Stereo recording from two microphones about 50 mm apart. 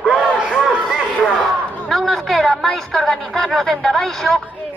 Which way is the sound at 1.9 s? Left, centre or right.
Centre.